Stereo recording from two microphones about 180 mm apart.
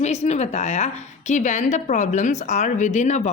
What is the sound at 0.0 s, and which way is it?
A woman's voice, 40° left (ahead or behind).